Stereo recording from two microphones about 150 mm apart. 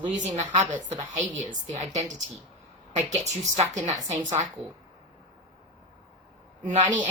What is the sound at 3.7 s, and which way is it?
Speech, 50° right (ahead or behind).